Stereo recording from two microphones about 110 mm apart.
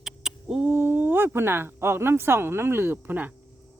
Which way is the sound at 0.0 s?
5° right (ahead or behind).